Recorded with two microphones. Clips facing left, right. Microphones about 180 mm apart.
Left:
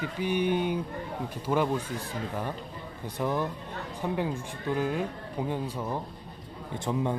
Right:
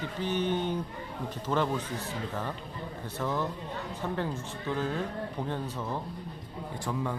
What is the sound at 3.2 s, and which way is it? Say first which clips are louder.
Speech: left 2 dB; 15° left (ahead or behind).